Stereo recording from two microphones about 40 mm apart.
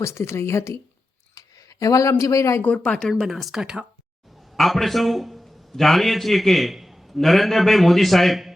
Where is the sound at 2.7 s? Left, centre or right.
Centre.